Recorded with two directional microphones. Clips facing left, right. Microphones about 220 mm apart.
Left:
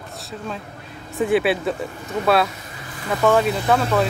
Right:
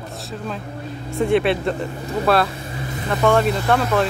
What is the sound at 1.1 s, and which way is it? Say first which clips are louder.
Speech: right 1 dB; 5° left (ahead or behind).